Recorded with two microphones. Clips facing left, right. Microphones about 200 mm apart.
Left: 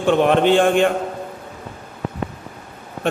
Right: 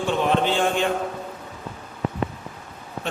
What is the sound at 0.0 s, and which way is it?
Speech, 60° left (ahead or behind).